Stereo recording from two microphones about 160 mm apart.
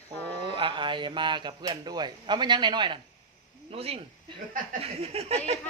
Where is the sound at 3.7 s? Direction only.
35° right (ahead or behind).